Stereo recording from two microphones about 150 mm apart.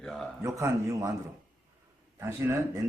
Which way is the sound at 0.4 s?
20° right (ahead or behind).